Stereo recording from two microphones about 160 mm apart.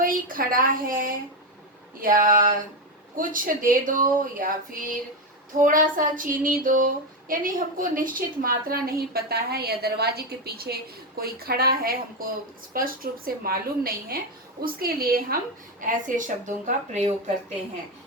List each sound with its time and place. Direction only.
0.0 s female singing: 60° right (ahead or behind)
11.2 s a woman's voice: 70° right (ahead or behind)
15.8 s speech: 55° right (ahead or behind)